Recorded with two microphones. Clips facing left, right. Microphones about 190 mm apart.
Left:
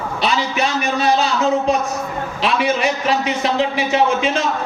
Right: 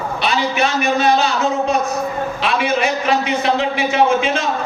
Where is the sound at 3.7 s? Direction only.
35° left (ahead or behind).